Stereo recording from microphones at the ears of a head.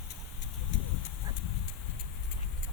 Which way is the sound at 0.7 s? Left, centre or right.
Left.